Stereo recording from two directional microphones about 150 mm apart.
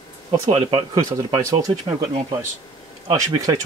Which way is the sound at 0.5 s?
35° right (ahead or behind).